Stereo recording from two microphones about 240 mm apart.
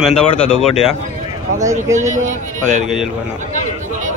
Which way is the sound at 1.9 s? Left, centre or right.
Right.